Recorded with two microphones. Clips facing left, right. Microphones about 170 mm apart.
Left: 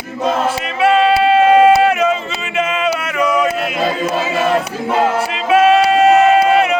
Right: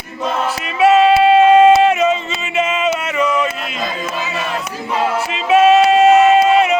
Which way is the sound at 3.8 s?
35° left (ahead or behind).